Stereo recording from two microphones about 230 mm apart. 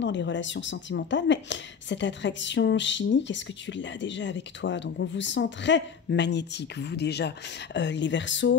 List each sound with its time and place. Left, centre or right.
0.0 s a woman's voice: left